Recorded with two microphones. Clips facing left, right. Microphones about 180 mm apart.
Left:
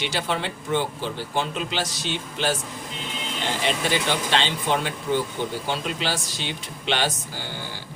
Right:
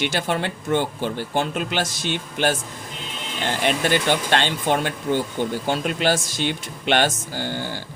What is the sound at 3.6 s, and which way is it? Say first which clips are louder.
Speech: right 4 dB; 55° right (ahead or behind).